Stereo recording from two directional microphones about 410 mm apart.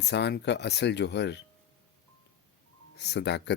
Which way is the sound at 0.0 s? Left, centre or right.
Left.